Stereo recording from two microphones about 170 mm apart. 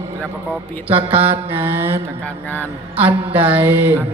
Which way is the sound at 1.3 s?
15° right (ahead or behind).